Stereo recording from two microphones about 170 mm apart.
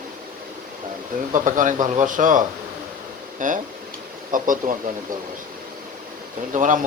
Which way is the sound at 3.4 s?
50° right (ahead or behind).